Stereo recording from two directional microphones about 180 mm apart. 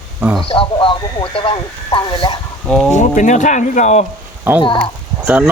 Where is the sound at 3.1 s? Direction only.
45° left (ahead or behind).